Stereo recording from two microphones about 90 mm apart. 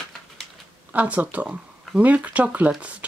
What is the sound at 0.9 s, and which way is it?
Speech, 15° right (ahead or behind).